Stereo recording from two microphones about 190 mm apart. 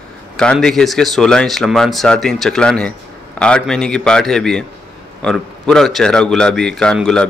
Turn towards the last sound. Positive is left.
turn(degrees=5)  # may be behind; listen again after turning